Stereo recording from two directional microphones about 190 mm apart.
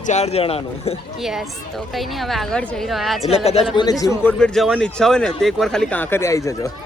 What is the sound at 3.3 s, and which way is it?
Speech, 35° left (ahead or behind).